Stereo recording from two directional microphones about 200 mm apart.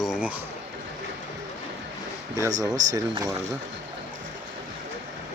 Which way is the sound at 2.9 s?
15° right (ahead or behind).